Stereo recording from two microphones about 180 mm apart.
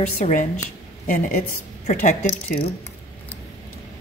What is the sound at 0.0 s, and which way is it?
Speech, 40° left (ahead or behind).